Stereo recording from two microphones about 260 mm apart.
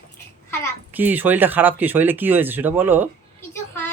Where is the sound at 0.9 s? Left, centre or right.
Centre.